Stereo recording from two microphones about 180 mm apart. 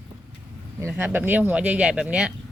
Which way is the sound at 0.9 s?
10° right (ahead or behind).